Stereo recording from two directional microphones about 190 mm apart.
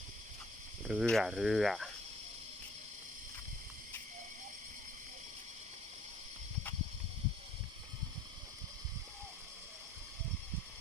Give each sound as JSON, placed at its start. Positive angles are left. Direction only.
{"t": 0.9, "sound": "speech", "side_deg": 0}